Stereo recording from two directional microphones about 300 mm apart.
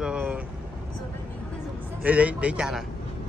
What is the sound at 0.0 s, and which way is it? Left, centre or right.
Vehicle, centre.